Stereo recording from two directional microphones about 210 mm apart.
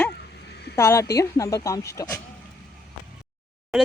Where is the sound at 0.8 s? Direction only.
10° left (ahead or behind).